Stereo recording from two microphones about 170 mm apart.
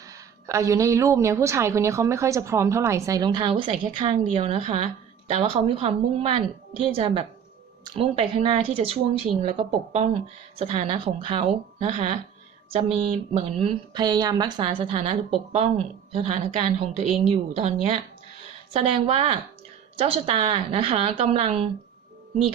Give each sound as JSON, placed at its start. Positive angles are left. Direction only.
{"t": 0.1, "sound": "a woman's voice", "side_deg": -20}
{"t": 16.1, "sound": "speech", "side_deg": -40}